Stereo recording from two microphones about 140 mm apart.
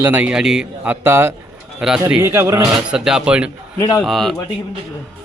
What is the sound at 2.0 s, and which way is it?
Speech, 15° right (ahead or behind).